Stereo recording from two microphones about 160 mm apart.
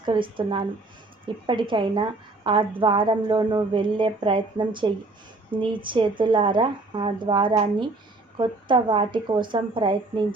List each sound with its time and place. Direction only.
0.0 s a woman's voice: 30° right (ahead or behind)